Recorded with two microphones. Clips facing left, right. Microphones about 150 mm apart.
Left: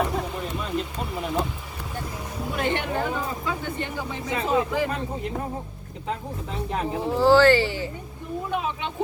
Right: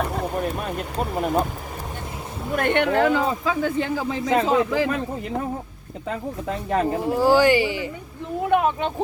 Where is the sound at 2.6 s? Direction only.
60° right (ahead or behind); by 4.9 s 90° right.